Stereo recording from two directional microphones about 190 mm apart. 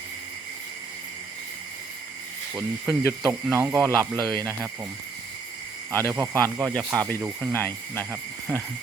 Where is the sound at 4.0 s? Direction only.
10° left (ahead or behind).